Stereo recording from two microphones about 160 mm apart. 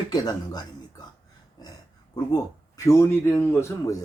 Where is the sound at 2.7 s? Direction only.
20° left (ahead or behind).